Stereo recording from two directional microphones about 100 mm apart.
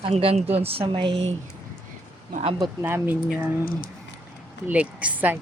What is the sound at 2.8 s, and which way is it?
Speech, 20° right (ahead or behind).